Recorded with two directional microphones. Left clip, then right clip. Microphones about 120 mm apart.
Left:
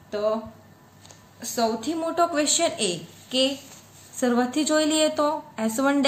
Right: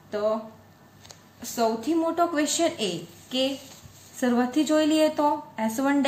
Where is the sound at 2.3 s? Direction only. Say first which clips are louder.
Left 2 dB; 25° left (ahead or behind).